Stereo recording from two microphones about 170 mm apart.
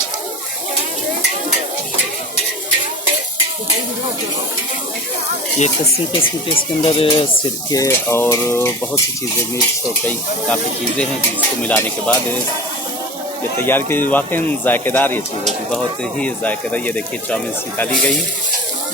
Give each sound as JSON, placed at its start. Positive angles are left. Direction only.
{"t": 6.1, "sound": "speech", "side_deg": 30}
{"t": 7.7, "sound": "speech", "side_deg": 20}
{"t": 10.1, "sound": "speech", "side_deg": 10}
{"t": 13.6, "sound": "speech", "side_deg": 10}
{"t": 16.2, "sound": "speech", "side_deg": 10}